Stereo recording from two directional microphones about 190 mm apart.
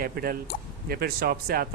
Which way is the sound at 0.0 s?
50° right (ahead or behind).